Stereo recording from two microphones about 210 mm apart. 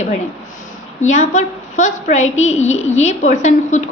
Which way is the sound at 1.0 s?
35° left (ahead or behind).